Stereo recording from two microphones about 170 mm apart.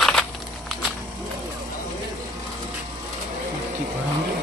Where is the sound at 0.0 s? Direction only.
Centre (ahead or behind).